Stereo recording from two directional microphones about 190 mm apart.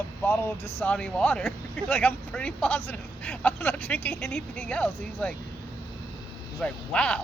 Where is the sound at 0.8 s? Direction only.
5° left (ahead or behind).